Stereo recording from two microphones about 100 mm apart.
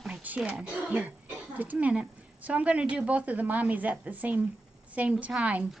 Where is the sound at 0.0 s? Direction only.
15° right (ahead or behind).